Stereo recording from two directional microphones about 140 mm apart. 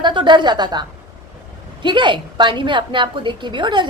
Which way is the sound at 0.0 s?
35° right (ahead or behind).